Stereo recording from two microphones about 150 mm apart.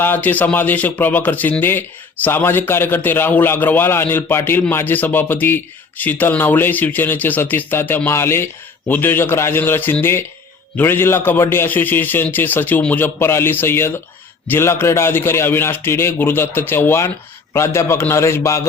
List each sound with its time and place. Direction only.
0.0 s a man's voice: 15° left (ahead or behind)